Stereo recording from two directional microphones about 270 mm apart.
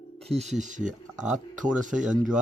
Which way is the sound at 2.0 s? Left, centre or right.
Centre.